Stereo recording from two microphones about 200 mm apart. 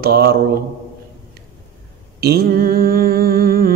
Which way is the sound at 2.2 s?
50° right (ahead or behind).